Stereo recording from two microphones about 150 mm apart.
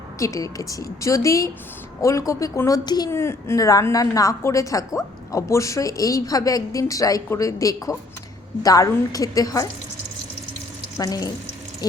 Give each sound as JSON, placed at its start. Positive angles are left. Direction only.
{"t": 0.2, "sound": "a woman's voice", "side_deg": 20}
{"t": 3.1, "sound": "a woman's voice", "side_deg": 15}
{"t": 10.9, "sound": "a woman's voice", "side_deg": 25}